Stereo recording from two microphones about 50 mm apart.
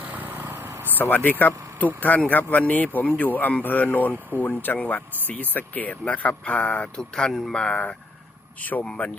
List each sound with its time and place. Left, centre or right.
0.1 s vehicle: right
0.9 s speech: left; by 7.8 s centre
8.6 s speech: left